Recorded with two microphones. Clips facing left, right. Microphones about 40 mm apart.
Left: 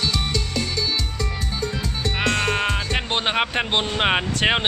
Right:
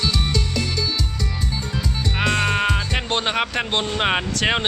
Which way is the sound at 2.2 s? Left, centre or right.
Centre.